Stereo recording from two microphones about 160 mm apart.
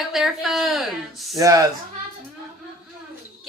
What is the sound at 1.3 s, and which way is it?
Speech, 20° right (ahead or behind).